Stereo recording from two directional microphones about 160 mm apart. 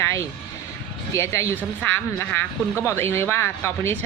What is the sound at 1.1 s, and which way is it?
Speech, 15° left (ahead or behind).